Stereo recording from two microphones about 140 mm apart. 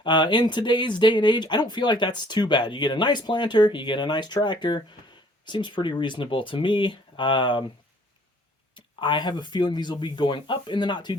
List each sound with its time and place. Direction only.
0.0 s speech: 35° left (ahead or behind)
8.7 s speech: 35° left (ahead or behind)